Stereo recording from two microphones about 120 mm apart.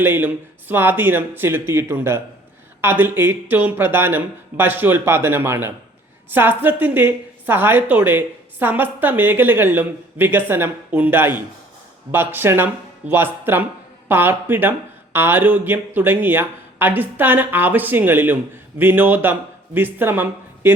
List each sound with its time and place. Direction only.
0.0 s a woman's voice: 20° right (ahead or behind)